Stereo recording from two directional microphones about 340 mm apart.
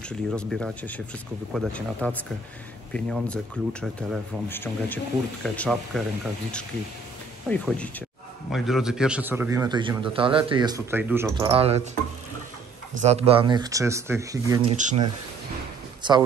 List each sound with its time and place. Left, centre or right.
0.3 s speech: centre
7.4 s a man's voice: centre
13.0 s a man's voice: centre
14.8 s speech: right